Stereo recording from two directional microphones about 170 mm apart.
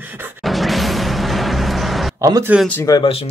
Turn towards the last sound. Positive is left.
turn(degrees=35)  # may be behind; listen again after turning